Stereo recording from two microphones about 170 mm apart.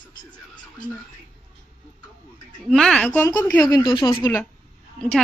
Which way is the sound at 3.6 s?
25° left (ahead or behind).